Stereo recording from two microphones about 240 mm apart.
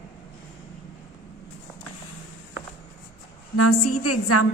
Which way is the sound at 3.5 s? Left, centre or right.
Left.